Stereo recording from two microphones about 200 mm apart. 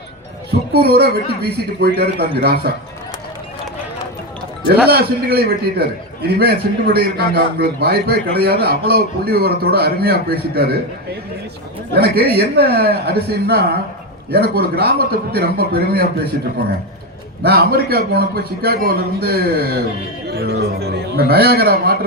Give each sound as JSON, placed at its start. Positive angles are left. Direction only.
{"t": 0.7, "sound": "a man's voice", "side_deg": -55}
{"t": 4.9, "sound": "a man's voice", "side_deg": -50}
{"t": 17.4, "sound": "a man's voice", "side_deg": -50}